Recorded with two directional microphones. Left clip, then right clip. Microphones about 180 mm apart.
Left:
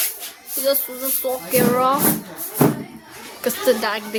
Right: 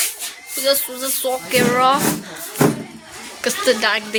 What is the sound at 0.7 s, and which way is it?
Speech, 10° left (ahead or behind).